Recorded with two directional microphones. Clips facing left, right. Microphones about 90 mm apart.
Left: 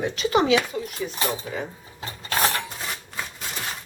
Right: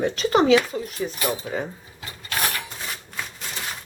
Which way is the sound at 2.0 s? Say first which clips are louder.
Left 3 dB; 30° left (ahead or behind).